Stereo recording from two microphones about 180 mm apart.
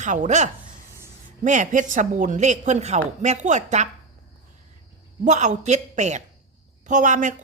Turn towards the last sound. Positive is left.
turn(degrees=-45)  # may be behind; listen again after turning